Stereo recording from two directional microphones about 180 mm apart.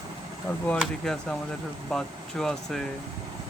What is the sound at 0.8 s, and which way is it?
Speech, centre (ahead or behind).